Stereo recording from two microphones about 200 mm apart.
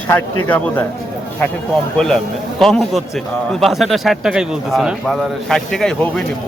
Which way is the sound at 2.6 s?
Centre (ahead or behind).